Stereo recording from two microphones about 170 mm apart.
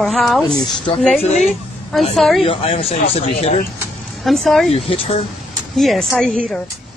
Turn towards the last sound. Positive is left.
turn(degrees=5)  # may be behind; listen again after turning